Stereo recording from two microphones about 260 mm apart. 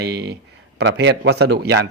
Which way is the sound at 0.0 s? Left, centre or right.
Right.